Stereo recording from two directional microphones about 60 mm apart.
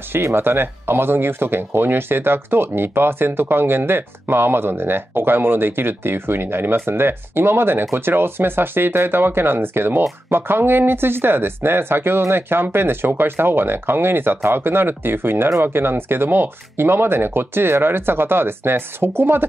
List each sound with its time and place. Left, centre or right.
0.2 s speech: right